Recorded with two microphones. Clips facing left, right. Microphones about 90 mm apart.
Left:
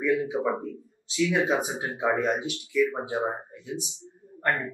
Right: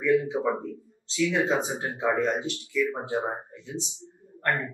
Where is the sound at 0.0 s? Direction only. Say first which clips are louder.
Right 2 dB; 10° left (ahead or behind).